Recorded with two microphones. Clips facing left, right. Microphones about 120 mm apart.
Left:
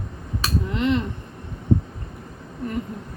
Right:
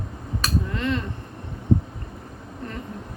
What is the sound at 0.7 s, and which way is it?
Speech, 20° left (ahead or behind).